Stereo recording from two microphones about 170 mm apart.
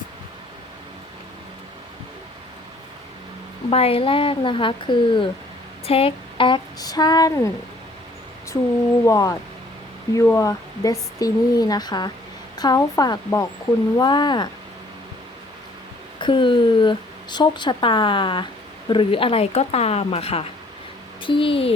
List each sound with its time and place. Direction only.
3.7 s speech: 35° left (ahead or behind); by 7.5 s 20° left (ahead or behind)
9.0 s speech: 20° left (ahead or behind)
16.2 s speech: 30° left (ahead or behind)